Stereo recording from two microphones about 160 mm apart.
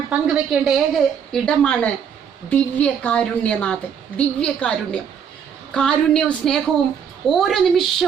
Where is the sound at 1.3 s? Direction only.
5° left (ahead or behind).